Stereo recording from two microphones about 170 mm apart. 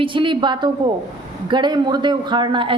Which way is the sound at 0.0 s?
30° right (ahead or behind).